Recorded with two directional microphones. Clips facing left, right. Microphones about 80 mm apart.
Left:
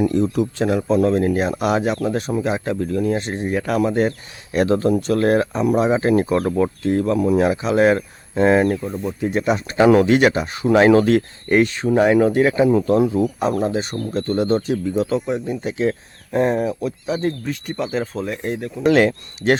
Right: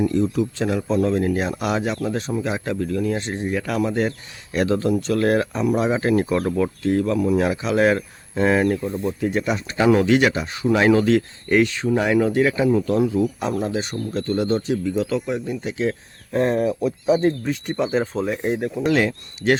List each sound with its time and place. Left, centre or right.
0.1 s speech: left
1.1 s speech: left
2.4 s speech: left
3.2 s speech: left
7.3 s speech: left
8.6 s speech: centre
9.2 s speech: left
9.6 s speech: left
16.3 s speech: centre
16.6 s speech: centre
18.9 s speech: left